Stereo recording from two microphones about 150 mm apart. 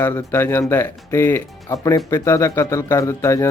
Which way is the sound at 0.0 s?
15° left (ahead or behind).